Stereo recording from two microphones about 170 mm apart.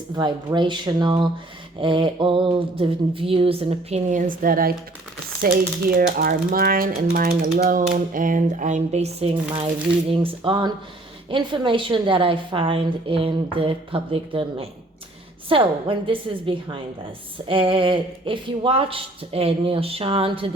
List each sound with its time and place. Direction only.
0.2 s a woman's voice: 25° right (ahead or behind)